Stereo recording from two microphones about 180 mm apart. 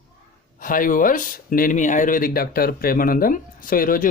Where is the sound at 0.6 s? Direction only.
50° left (ahead or behind).